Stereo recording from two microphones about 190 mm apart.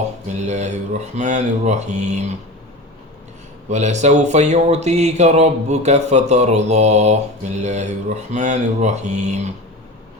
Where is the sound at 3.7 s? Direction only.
40° right (ahead or behind).